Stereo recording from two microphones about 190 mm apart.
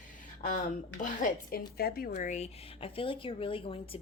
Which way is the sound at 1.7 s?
55° left (ahead or behind).